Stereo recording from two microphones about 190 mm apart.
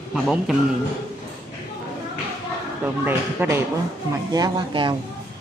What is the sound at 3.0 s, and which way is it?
Speech, 10° right (ahead or behind).